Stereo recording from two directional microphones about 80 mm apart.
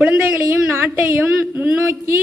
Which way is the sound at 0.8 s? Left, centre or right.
Right.